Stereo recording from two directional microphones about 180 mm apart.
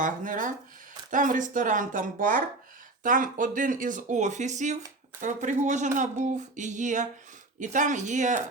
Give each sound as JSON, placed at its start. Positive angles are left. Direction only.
{"t": 0.0, "sound": "speech", "side_deg": -50}